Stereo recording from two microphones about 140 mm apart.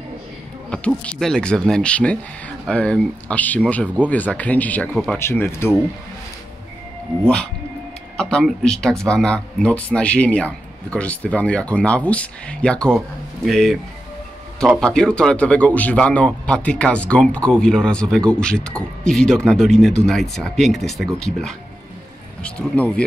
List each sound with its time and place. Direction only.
0.7 s speech: 5° left (ahead or behind)
5.2 s speech: 15° left (ahead or behind)
8.2 s speech: 5° left (ahead or behind)
14.8 s speech: 5° left (ahead or behind)